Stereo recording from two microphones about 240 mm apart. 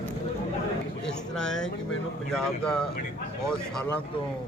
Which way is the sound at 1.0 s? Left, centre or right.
Centre.